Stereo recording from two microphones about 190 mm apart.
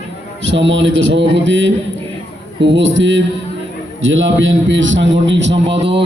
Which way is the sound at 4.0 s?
90° right.